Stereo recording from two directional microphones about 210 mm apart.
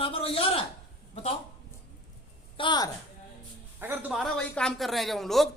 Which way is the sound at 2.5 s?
20° left (ahead or behind).